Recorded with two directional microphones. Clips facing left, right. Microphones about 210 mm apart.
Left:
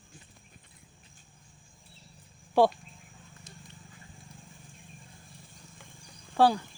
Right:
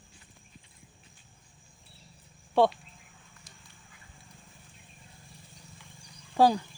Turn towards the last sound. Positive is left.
turn(degrees=-15)  # may be behind; listen again after turning